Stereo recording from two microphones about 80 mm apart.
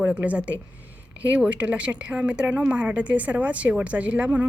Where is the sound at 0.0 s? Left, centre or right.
Centre.